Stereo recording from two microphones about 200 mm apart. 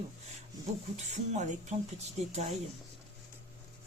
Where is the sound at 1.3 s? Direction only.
35° right (ahead or behind).